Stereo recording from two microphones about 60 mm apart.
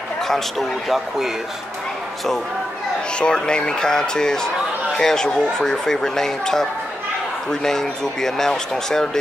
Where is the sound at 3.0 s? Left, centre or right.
Centre.